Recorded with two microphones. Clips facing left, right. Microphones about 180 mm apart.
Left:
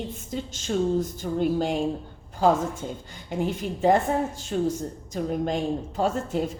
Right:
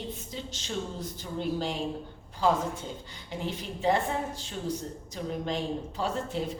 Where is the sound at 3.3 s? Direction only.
50° left (ahead or behind).